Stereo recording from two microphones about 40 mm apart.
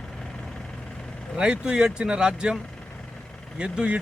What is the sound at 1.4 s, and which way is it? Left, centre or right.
Speech, right.